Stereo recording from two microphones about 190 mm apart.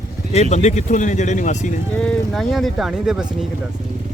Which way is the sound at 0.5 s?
40° left (ahead or behind).